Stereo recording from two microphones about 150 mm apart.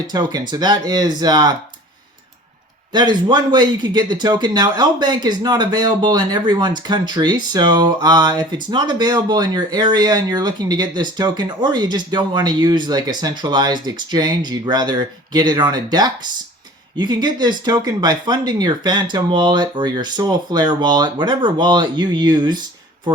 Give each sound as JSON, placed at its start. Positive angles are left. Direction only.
{"t": 0.1, "sound": "speech", "side_deg": -25}
{"t": 2.9, "sound": "speech", "side_deg": -30}